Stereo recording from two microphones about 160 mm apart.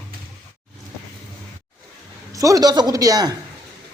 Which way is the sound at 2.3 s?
20° right (ahead or behind).